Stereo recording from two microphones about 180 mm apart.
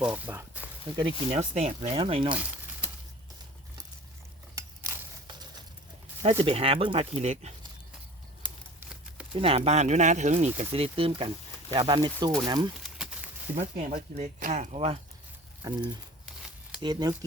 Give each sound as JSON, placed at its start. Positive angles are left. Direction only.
{"t": 0.0, "sound": "speech", "side_deg": -10}
{"t": 0.9, "sound": "speech", "side_deg": -30}
{"t": 4.5, "sound": "a sound", "side_deg": -20}
{"t": 6.2, "sound": "speech", "side_deg": -30}
{"t": 9.3, "sound": "speech", "side_deg": -30}
{"t": 12.8, "sound": "a sound", "side_deg": -5}
{"t": 13.9, "sound": "speech", "side_deg": -50}
{"t": 15.6, "sound": "speech", "side_deg": -20}
{"t": 16.8, "sound": "speech", "side_deg": -20}